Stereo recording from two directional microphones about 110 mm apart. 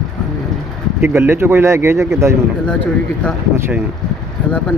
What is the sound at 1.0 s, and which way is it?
Speech, 20° right (ahead or behind).